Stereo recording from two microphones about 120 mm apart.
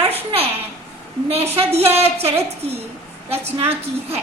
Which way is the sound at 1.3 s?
60° right (ahead or behind).